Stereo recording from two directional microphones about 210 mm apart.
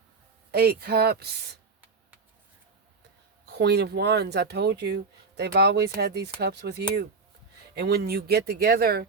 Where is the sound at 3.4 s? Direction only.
50° right (ahead or behind).